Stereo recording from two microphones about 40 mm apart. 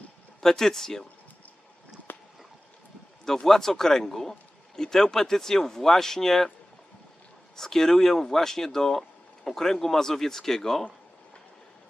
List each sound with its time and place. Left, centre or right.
0.4 s speech: centre
2.1 s a sound: left
3.3 s speech: centre
7.5 s speech: centre